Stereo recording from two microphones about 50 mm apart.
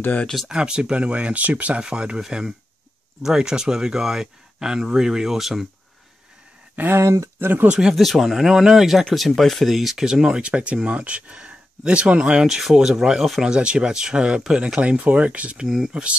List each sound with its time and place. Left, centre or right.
0.5 s speech: centre
7.0 s speech: right
7.3 s speech: right
7.9 s speech: centre
10.4 s speech: right
14.8 s speech: right